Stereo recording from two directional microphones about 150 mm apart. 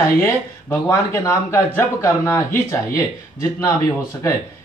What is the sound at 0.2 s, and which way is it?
Speech, 20° left (ahead or behind).